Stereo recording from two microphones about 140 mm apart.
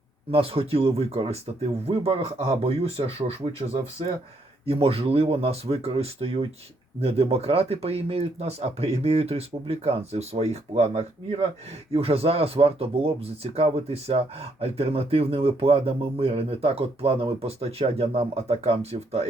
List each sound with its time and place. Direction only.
0.3 s speech: 45° right (ahead or behind)